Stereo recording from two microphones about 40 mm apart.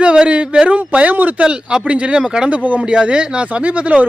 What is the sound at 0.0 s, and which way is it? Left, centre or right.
Speech, right.